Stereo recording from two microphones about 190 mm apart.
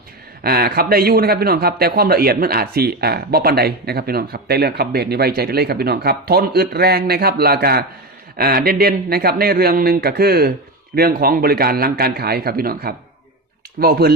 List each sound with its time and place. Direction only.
0.4 s a man's voice: 55° right (ahead or behind)